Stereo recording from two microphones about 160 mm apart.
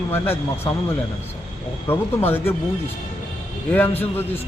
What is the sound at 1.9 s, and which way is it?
Speech, 15° left (ahead or behind).